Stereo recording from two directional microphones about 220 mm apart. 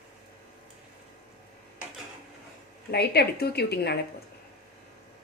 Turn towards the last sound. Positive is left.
turn(degrees=45)  # may be behind; listen again after turning